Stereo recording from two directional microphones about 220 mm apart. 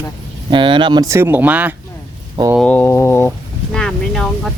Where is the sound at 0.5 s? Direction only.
20° right (ahead or behind).